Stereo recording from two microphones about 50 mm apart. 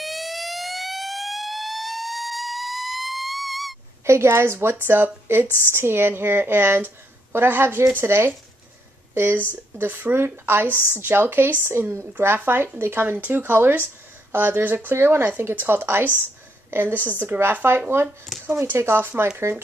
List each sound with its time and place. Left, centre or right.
0.0 s siren: centre
4.0 s a woman's voice: right
4.7 s speech: right